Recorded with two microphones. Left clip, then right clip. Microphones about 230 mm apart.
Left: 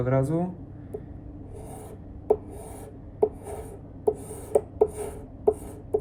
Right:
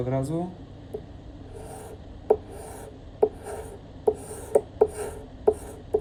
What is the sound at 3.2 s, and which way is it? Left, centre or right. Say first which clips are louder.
Writing: right 1 dB; left.